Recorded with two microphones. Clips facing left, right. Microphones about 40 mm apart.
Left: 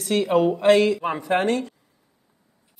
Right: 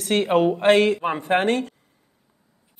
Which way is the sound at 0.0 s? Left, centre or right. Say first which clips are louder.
Right 1 dB; right.